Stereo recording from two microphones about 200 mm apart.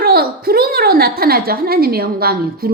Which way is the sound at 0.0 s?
50° right (ahead or behind).